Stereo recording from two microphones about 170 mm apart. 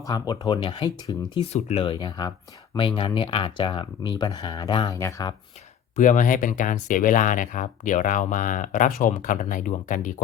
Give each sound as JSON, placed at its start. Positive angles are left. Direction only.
{"t": 0.0, "sound": "speech", "side_deg": 25}
{"t": 1.5, "sound": "speech", "side_deg": 40}
{"t": 6.0, "sound": "speech", "side_deg": 50}